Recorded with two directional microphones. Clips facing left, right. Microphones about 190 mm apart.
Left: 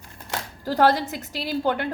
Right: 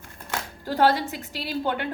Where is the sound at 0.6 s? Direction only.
40° left (ahead or behind).